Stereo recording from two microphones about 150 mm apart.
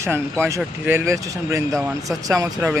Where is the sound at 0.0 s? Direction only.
15° right (ahead or behind).